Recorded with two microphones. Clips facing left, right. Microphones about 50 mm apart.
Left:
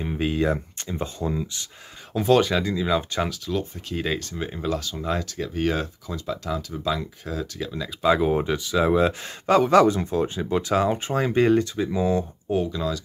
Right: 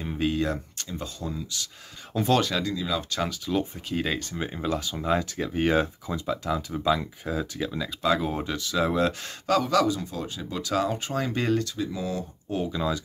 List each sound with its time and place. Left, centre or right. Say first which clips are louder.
0.0 s speech: left 3 dB; centre
2.1 s speech: left 4 dB; centre
2.5 s speech: left 5 dB; left
3.5 s speech: even; centre
8.0 s speech: left 6 dB; centre
9.5 s speech: left 6 dB; left
12.7 s speech: even; centre